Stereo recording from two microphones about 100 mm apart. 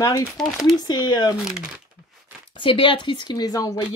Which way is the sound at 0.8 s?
45° left (ahead or behind).